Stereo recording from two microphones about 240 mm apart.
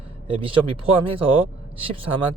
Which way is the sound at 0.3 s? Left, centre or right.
Right.